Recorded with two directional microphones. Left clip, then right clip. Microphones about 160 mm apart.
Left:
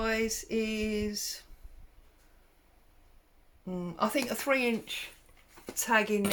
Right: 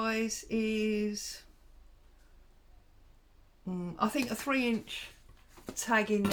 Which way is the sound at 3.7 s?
25° left (ahead or behind).